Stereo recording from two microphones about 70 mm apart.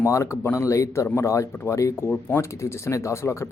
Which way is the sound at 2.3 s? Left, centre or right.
Left.